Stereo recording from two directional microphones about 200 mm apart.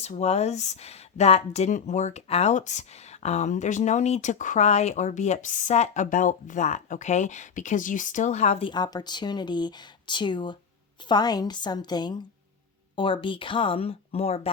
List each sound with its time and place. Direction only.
0.0 s speech: 35° left (ahead or behind)